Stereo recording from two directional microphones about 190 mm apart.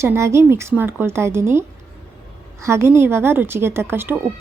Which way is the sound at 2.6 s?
15° right (ahead or behind).